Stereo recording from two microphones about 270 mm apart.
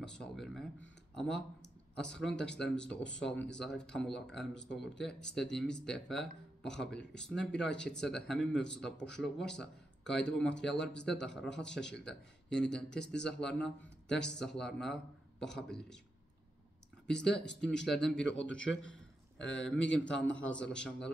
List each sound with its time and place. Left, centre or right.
0.0 s speech: centre
17.1 s speech: centre
19.4 s a man's voice: left
20.2 s speech: centre